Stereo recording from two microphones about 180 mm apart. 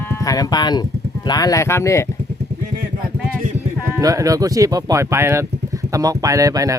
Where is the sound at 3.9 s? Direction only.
20° right (ahead or behind).